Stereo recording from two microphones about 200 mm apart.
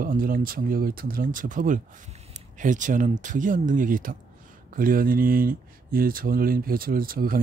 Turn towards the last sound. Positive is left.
turn(degrees=-45)  # may be behind; listen again after turning